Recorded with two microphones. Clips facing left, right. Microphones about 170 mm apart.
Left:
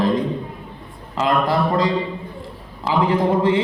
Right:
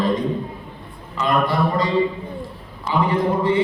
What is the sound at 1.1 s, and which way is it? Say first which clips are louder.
Speech: left 1 dB; 85° left.